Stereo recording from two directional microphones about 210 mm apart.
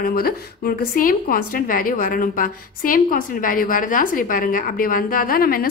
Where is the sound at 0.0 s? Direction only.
45° left (ahead or behind).